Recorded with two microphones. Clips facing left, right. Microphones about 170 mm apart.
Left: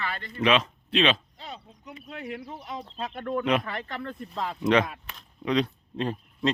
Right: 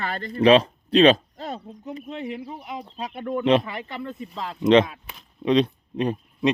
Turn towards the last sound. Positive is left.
turn(degrees=-20)  # may be behind; listen again after turning